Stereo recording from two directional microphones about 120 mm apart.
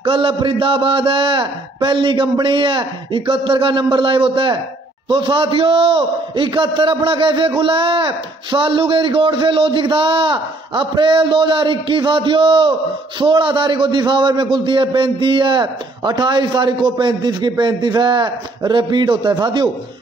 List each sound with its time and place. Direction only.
0.0 s a man's voice: 50° right (ahead or behind)